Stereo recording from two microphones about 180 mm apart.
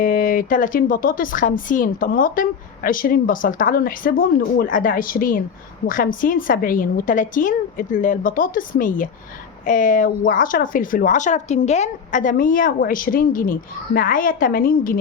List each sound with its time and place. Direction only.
0.0 s speech: 50° left (ahead or behind)